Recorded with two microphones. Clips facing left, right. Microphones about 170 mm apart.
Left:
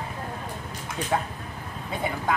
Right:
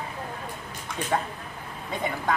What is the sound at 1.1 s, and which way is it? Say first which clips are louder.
Speech: even; 5° left (ahead or behind).